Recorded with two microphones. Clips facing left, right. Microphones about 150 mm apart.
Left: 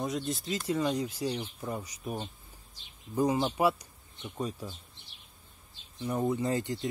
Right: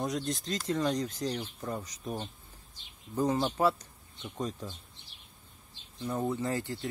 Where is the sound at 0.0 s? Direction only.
Centre (ahead or behind).